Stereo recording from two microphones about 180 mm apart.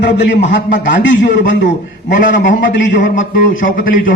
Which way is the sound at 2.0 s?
45° left (ahead or behind).